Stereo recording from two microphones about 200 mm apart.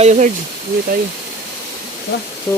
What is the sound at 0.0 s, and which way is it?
Speech, 35° right (ahead or behind).